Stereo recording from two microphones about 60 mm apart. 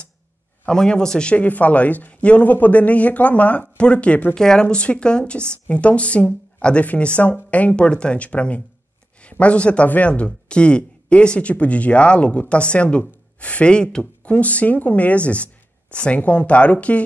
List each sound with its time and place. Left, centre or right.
0.7 s speech: centre
4.4 s speech: centre